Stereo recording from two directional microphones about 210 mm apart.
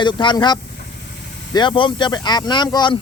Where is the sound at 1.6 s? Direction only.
25° left (ahead or behind).